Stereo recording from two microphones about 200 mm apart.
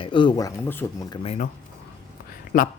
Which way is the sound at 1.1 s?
30° left (ahead or behind).